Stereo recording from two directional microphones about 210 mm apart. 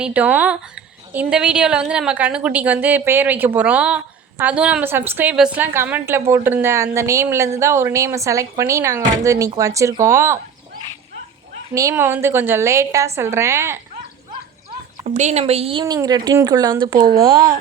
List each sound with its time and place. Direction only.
0.0 s a woman's voice: 5° right (ahead or behind)
11.7 s a woman's voice: 15° right (ahead or behind)
15.0 s a woman's voice: 35° right (ahead or behind); by 17.5 s 15° right (ahead or behind)